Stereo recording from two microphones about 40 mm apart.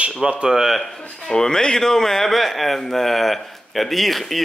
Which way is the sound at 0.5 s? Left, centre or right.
Centre.